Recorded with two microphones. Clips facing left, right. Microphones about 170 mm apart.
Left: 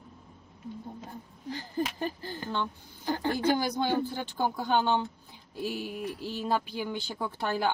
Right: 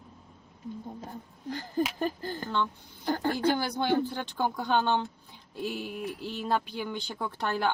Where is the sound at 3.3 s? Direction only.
10° left (ahead or behind).